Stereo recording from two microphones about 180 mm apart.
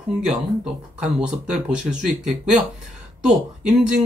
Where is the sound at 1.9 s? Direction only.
45° right (ahead or behind).